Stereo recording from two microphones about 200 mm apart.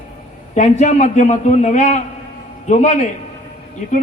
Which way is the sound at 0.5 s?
35° left (ahead or behind).